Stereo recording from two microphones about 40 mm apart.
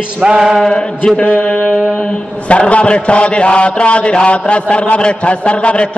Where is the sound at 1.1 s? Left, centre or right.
Left.